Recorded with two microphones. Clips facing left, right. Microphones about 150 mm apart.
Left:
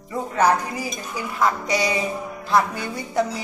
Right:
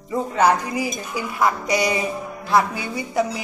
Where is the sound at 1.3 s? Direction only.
15° right (ahead or behind).